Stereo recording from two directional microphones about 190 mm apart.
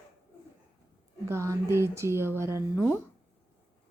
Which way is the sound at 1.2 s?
15° right (ahead or behind).